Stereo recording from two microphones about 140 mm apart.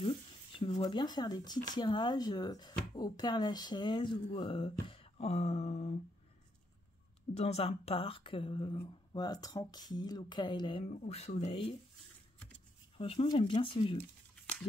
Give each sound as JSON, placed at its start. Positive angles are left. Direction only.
{"t": 0.0, "sound": "speech", "side_deg": 35}
{"t": 7.3, "sound": "speech", "side_deg": 45}
{"t": 10.8, "sound": "speech", "side_deg": 50}
{"t": 12.9, "sound": "speech", "side_deg": 40}